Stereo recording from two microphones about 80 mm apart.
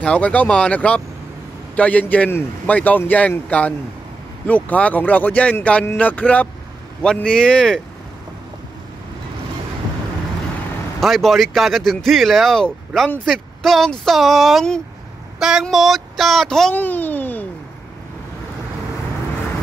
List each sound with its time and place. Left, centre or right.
0.0 s a man's voice: centre
11.0 s speech: centre
15.3 s a sound: centre
15.7 s speech: centre
16.7 s a man's voice: left